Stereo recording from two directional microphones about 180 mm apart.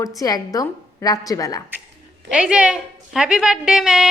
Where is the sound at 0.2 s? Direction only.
20° left (ahead or behind).